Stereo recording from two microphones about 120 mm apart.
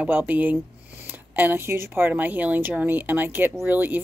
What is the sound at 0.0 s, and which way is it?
Speech, 10° right (ahead or behind).